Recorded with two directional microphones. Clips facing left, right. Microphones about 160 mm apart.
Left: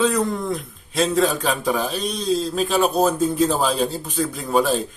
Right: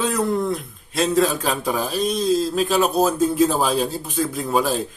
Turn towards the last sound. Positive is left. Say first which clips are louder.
# left 1 dB
turn(degrees=0)  # may be behind; listen again after turning